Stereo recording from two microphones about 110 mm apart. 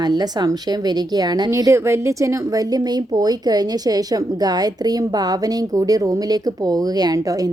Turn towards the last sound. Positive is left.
turn(degrees=-35)  # may be behind; listen again after turning